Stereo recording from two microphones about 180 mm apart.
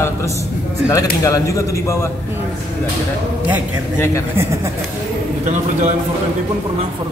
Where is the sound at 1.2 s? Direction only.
15° left (ahead or behind).